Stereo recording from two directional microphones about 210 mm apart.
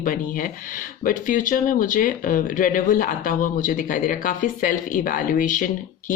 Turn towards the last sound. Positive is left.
turn(degrees=40)  # may be behind; listen again after turning